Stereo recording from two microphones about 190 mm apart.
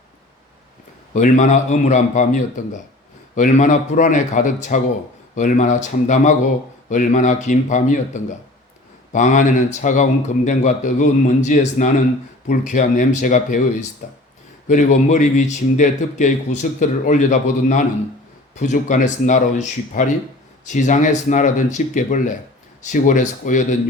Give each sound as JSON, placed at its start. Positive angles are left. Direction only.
{"t": 1.1, "sound": "speech", "side_deg": 40}